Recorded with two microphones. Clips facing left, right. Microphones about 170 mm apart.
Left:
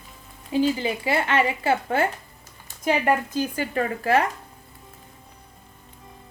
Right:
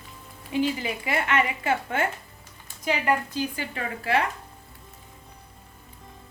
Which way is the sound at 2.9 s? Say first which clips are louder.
Left 3 dB; 45° left (ahead or behind).